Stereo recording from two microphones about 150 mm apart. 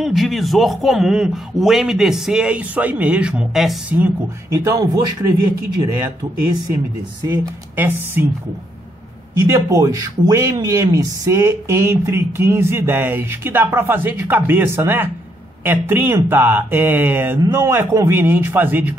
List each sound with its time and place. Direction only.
0.0 s a man's voice: centre (ahead or behind)
4.5 s speech: 20° right (ahead or behind)
7.2 s speech: 15° right (ahead or behind)
9.4 s speech: 20° right (ahead or behind)